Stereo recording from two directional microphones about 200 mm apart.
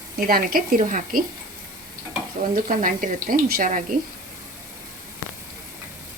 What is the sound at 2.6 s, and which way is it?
Speech, 45° right (ahead or behind).